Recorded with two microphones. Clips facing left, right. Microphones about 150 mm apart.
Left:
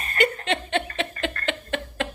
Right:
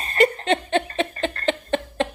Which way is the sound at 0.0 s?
30° right (ahead or behind).